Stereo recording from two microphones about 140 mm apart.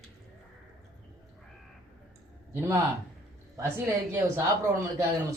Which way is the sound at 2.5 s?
20° right (ahead or behind).